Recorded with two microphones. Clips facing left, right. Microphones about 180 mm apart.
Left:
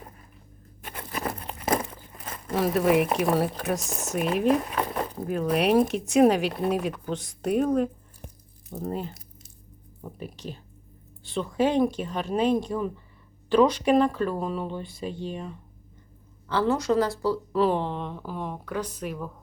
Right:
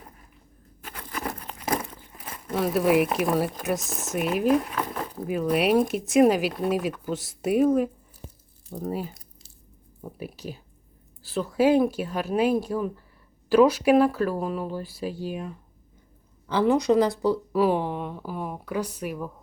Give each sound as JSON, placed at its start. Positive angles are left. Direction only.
{"t": 0.8, "sound": "patter", "side_deg": 25}
{"t": 2.1, "sound": "crumpling", "side_deg": -10}
{"t": 2.5, "sound": "speech", "side_deg": 0}